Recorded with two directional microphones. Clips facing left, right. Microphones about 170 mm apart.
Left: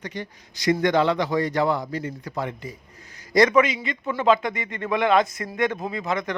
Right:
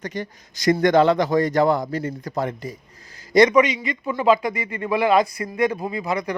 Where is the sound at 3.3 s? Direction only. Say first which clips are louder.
Right 3 dB; 20° right (ahead or behind).